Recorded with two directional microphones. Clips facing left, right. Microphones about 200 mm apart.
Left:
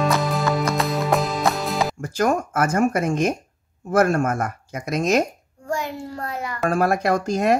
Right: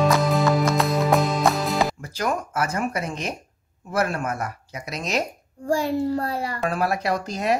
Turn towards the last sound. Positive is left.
turn(degrees=50)  # may be behind; listen again after turning